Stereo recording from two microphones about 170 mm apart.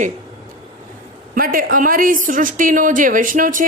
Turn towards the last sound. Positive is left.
turn(degrees=-50)  # may be behind; listen again after turning